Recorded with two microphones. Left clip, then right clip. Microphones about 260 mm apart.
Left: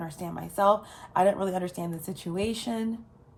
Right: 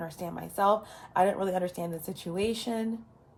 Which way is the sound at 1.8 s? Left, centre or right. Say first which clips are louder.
Even; left.